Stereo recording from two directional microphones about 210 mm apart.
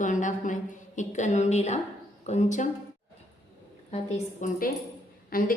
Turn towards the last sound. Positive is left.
turn(degrees=45)  # may be behind; listen again after turning